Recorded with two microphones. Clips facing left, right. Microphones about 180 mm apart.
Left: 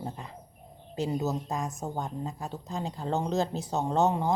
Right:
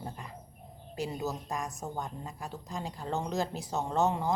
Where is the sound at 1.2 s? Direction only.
20° left (ahead or behind).